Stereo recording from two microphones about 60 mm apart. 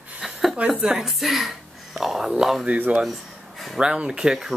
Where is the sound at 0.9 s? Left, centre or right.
Centre.